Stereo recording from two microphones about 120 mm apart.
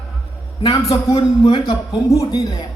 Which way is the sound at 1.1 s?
50° left (ahead or behind).